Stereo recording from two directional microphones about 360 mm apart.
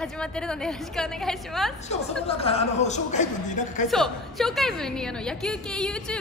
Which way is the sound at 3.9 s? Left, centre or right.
Centre.